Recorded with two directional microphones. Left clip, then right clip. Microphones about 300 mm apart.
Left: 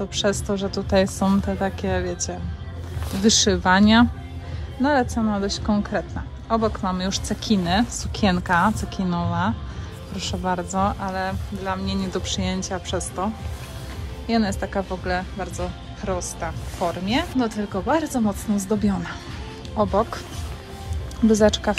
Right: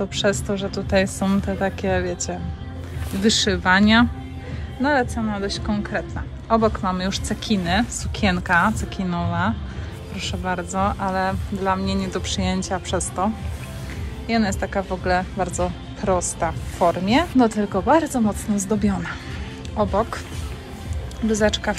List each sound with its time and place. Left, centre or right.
0.0 s speech: centre
21.3 s speech: centre